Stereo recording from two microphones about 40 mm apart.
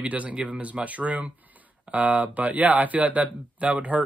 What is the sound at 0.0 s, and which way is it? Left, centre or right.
Speech, right.